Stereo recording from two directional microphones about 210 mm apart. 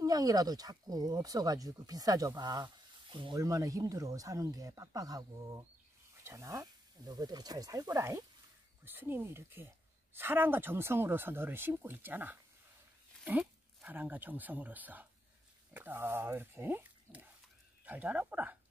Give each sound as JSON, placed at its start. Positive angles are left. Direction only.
{"t": 0.0, "sound": "speech", "side_deg": -15}